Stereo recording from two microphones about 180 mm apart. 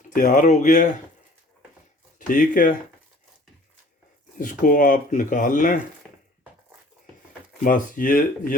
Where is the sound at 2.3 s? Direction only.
50° left (ahead or behind).